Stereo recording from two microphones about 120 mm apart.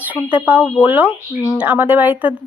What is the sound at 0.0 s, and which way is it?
Speech, 10° right (ahead or behind).